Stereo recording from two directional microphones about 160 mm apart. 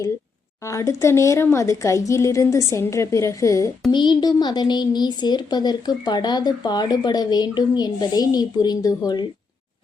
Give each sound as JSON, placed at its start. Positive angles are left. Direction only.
{"t": 0.6, "sound": "a woman's voice", "side_deg": 20}